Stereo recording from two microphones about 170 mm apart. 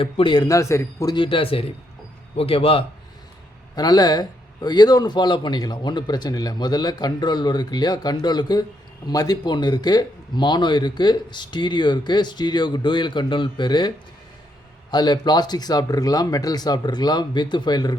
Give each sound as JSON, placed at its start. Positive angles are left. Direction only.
{"t": 0.0, "sound": "a man's voice", "side_deg": 30}